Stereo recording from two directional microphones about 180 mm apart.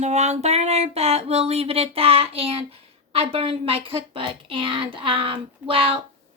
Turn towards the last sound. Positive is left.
turn(degrees=-30)  # may be behind; listen again after turning